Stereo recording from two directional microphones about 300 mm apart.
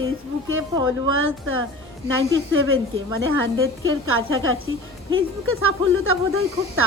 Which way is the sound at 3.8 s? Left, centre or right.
Right.